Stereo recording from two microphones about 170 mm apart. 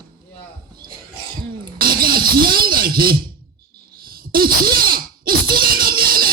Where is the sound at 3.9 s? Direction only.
60° right (ahead or behind).